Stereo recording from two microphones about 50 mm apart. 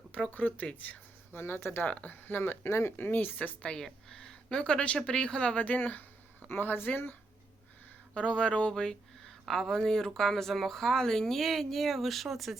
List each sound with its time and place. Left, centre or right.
0.3 s speech: left
1.3 s speech: left
1.9 s speech: left
2.2 s speech: left
3.6 s speech: centre; by 7.2 s left
8.1 s speech: left; by 12.5 s centre